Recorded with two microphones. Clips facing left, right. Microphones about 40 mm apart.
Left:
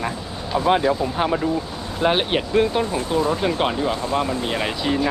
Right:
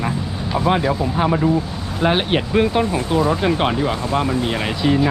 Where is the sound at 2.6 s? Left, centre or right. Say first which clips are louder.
Right 2 dB; centre.